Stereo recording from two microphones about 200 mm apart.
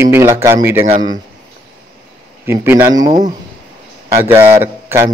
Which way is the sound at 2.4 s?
10° right (ahead or behind).